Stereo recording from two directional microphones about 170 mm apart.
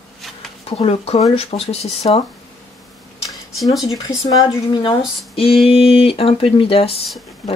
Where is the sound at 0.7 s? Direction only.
35° left (ahead or behind).